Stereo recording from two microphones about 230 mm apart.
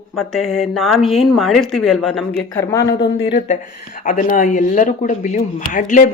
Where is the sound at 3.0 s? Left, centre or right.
Left.